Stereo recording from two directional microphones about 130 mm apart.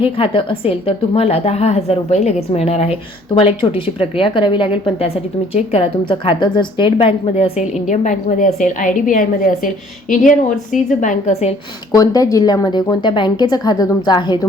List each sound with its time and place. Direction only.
0.2 s speech: 45° left (ahead or behind)
3.2 s speech: 40° left (ahead or behind)
7.9 s a woman's voice: 70° left (ahead or behind)
11.9 s speech: 25° left (ahead or behind)